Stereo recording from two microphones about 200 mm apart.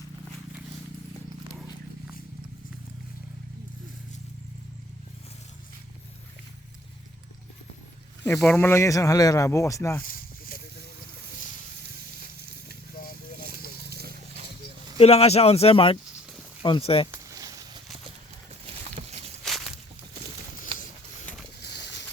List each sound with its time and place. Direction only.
8.2 s speech: 10° left (ahead or behind)
10.0 s a sound: 45° left (ahead or behind)
12.2 s sizzle: 50° right (ahead or behind)
13.9 s a sound: 50° right (ahead or behind)
14.9 s speech: 30° left (ahead or behind)
17.1 s a sound: 15° right (ahead or behind)
18.6 s boat: 30° right (ahead or behind)
19.5 s walk: centre (ahead or behind)
21.6 s bird: 55° left (ahead or behind)